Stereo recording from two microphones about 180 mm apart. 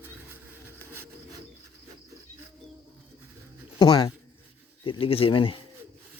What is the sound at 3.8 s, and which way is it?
Speech, 20° left (ahead or behind).